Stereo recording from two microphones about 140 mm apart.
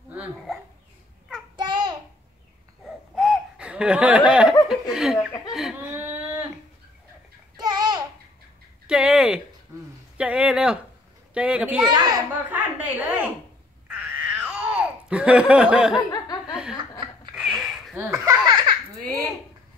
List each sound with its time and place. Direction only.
1.6 s child singing: 30° right (ahead or behind)
3.2 s laughter: 5° right (ahead or behind)
4.3 s speech: 5° right (ahead or behind)
5.1 s speech: 30° left (ahead or behind)
5.5 s whimper: 5° right (ahead or behind)
7.5 s babbling: 30° right (ahead or behind)
8.8 s a sound: 5° right (ahead or behind)
10.1 s speech: 10° right (ahead or behind)
11.9 s a child's voice: 30° right (ahead or behind)
12.4 s a sound: 10° right (ahead or behind)
13.8 s babbling: 10° right (ahead or behind)
16.4 s laughter: 5° right (ahead or behind)
17.4 s a sound: 5° right (ahead or behind)
17.9 s baby laughter: 20° right (ahead or behind)